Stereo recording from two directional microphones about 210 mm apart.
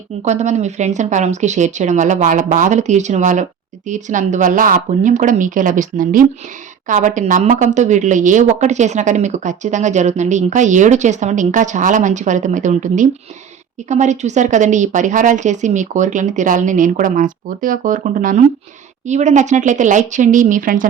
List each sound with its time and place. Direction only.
0.3 s speech: 35° right (ahead or behind)